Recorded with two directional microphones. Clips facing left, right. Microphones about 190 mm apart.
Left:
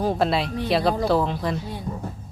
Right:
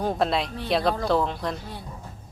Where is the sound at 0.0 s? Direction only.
Centre (ahead or behind).